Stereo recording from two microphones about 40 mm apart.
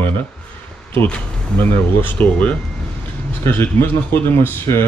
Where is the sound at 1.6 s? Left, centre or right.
Left.